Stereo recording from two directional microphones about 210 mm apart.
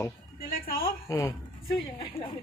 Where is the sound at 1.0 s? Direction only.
15° left (ahead or behind).